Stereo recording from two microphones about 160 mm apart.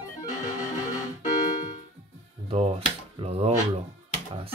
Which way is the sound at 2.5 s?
40° right (ahead or behind).